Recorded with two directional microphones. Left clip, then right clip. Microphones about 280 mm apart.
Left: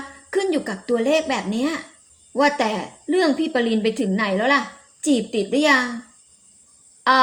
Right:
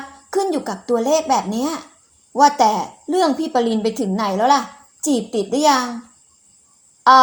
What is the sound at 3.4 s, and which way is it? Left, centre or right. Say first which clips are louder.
Speech: right 2 dB; right.